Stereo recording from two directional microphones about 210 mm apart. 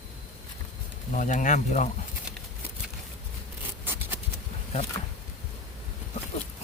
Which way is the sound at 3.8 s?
10° right (ahead or behind).